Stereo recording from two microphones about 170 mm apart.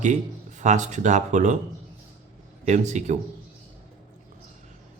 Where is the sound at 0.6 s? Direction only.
45° right (ahead or behind).